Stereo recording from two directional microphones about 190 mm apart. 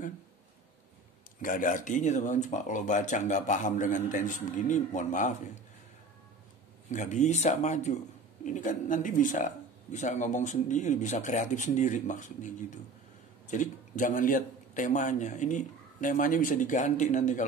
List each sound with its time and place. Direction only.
1.4 s speech: 45° left (ahead or behind)
6.9 s speech: 40° left (ahead or behind)